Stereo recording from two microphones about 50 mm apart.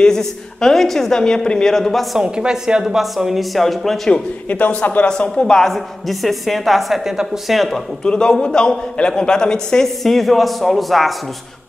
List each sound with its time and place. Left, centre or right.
0.0 s a man's voice: centre
2.1 s a woman's voice: centre
4.5 s a man's voice: left
5.0 s a man's voice: centre
5.7 s a woman's voice: centre
8.0 s a man's voice: centre